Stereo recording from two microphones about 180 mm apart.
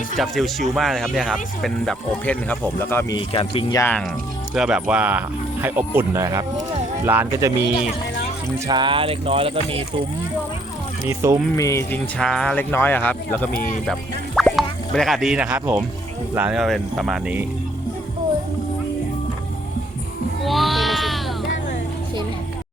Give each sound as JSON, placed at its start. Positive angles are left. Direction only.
{"t": 0.2, "sound": "speech", "side_deg": 0}
{"t": 3.2, "sound": "speech", "side_deg": 30}
{"t": 3.8, "sound": "speech", "side_deg": 10}
{"t": 4.5, "sound": "speech", "side_deg": -5}
{"t": 11.1, "sound": "speech", "side_deg": -15}
{"t": 11.5, "sound": "speech", "side_deg": 15}
{"t": 12.2, "sound": "speech", "side_deg": 5}
{"t": 20.4, "sound": "sheep", "side_deg": 0}